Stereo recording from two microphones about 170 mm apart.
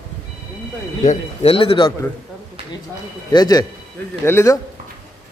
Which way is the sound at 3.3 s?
25° left (ahead or behind).